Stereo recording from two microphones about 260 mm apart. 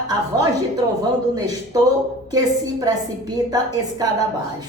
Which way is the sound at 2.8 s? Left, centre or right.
Centre.